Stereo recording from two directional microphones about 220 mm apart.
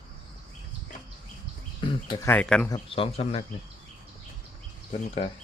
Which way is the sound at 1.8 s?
20° left (ahead or behind).